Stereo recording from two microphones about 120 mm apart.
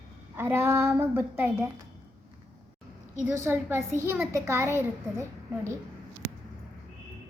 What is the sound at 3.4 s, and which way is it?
A child's voice, 20° right (ahead or behind).